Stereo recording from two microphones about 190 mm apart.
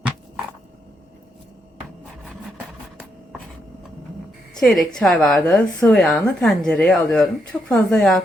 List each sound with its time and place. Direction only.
4.6 s a woman's voice: centre (ahead or behind)